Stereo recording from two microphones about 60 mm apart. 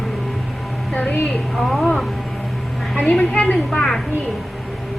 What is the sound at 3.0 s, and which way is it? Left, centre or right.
Speech, left.